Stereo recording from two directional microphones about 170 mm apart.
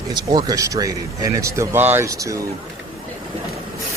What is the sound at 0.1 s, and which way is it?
Speech, 25° right (ahead or behind).